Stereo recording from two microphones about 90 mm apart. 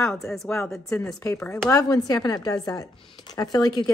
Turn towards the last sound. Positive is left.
turn(degrees=45)  # may be behind; listen again after turning